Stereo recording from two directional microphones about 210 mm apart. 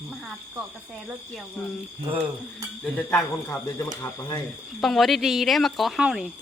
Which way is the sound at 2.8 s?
10° left (ahead or behind).